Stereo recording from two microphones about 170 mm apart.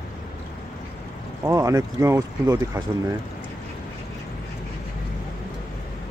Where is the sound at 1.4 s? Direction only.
20° right (ahead or behind).